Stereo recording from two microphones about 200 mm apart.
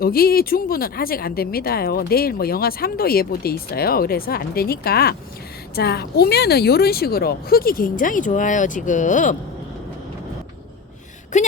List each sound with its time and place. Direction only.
0.0 s speech: 50° left (ahead or behind)
11.3 s speech: 35° left (ahead or behind)